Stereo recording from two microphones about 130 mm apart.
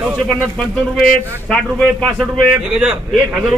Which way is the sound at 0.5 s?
5° left (ahead or behind).